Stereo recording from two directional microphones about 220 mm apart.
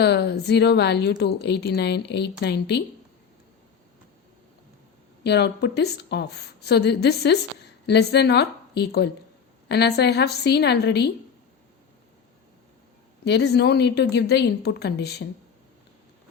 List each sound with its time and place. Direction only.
0.0 s a woman's voice: 50° left (ahead or behind)
5.2 s a woman's voice: 50° left (ahead or behind)
13.2 s a woman's voice: 50° left (ahead or behind)